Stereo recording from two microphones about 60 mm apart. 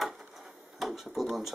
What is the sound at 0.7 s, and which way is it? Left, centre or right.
Speech, centre.